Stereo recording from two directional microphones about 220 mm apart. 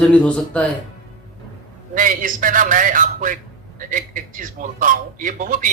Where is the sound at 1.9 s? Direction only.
35° right (ahead or behind).